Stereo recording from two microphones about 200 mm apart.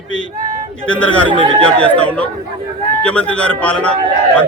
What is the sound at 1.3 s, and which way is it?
Speech, 25° right (ahead or behind).